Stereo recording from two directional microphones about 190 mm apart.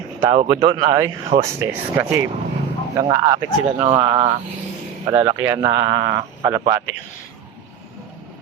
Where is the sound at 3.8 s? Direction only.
30° right (ahead or behind).